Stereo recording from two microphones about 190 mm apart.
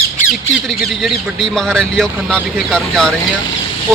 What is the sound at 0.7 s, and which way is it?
Speech, centre (ahead or behind).